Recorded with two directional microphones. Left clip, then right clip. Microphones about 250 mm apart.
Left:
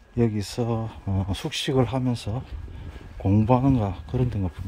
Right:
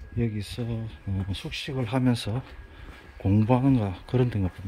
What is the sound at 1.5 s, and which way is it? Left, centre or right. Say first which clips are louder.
Speech: left 8 dB; left.